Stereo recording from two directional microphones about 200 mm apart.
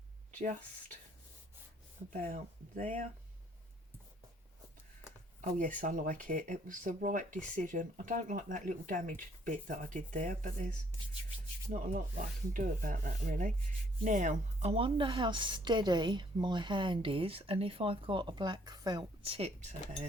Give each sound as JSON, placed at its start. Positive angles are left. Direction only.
{"t": 2.2, "sound": "speech", "side_deg": -35}
{"t": 5.4, "sound": "speech", "side_deg": -40}
{"t": 11.7, "sound": "a woman's voice", "side_deg": -40}